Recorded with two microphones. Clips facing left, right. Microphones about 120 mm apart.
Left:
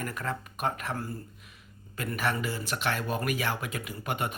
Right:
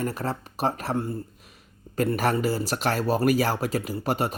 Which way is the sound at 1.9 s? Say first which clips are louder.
Right 7 dB; 40° right (ahead or behind).